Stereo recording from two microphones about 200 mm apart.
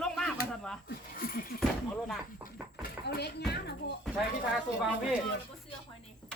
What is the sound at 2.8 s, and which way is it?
Speech, 55° left (ahead or behind).